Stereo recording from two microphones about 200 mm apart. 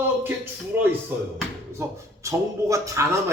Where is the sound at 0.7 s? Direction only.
10° right (ahead or behind).